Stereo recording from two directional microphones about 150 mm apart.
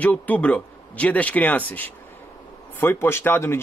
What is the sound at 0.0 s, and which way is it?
A man's voice, 10° left (ahead or behind).